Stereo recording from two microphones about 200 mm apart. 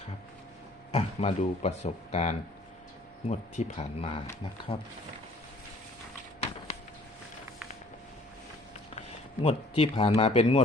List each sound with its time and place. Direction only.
0.9 s speech: 30° left (ahead or behind)
9.0 s speech: 30° left (ahead or behind)